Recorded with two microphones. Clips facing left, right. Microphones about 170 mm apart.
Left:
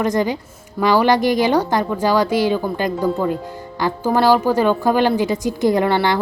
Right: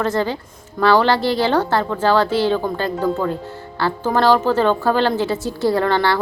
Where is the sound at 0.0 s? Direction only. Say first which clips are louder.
Left 1 dB; 15° left (ahead or behind).